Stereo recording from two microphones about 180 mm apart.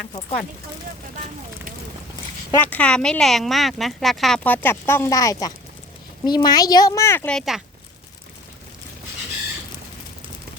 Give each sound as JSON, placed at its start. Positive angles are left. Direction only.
{"t": 2.5, "sound": "speech", "side_deg": 10}
{"t": 7.3, "sound": "speech", "side_deg": 0}